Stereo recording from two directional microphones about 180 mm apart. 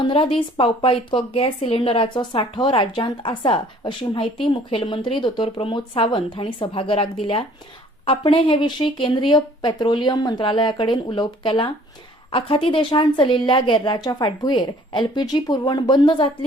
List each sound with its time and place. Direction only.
0.0 s speech: 30° left (ahead or behind)